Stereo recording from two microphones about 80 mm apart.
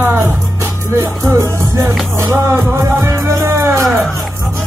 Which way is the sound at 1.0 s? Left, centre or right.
Right.